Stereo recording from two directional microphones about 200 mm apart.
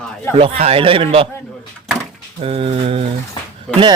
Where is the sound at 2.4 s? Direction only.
30° right (ahead or behind).